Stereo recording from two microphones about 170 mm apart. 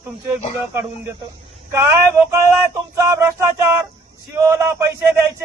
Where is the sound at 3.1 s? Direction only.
15° right (ahead or behind).